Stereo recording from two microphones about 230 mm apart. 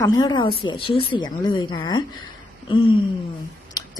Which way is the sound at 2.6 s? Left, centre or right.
Left.